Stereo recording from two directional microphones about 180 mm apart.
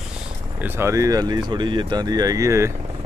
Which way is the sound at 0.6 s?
15° right (ahead or behind).